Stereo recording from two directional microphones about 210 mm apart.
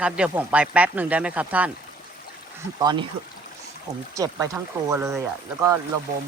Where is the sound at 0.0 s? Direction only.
5° right (ahead or behind).